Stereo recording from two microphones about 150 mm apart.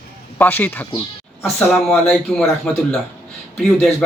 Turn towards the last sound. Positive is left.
turn(degrees=5)  # may be behind; listen again after turning